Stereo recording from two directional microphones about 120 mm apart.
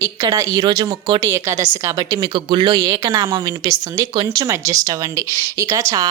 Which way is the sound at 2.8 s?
30° right (ahead or behind).